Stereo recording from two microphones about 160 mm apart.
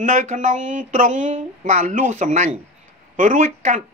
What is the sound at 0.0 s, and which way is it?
A man's voice, 50° right (ahead or behind).